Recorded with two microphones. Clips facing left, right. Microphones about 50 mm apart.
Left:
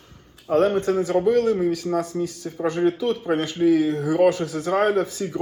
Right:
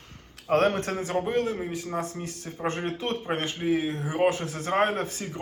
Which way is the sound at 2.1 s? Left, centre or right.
Right.